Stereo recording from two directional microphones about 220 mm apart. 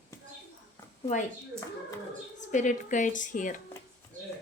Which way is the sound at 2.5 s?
35° left (ahead or behind).